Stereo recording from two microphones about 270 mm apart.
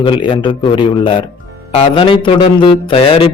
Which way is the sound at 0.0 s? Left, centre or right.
Centre.